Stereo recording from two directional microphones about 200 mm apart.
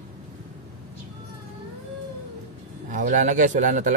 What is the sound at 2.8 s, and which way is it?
Speech, 40° right (ahead or behind).